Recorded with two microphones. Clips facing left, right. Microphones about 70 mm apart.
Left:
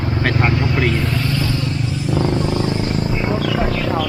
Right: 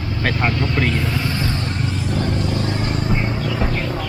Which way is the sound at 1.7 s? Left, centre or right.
Right.